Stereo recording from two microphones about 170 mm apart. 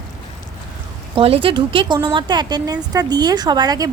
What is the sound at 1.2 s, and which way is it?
A woman's voice, 30° right (ahead or behind).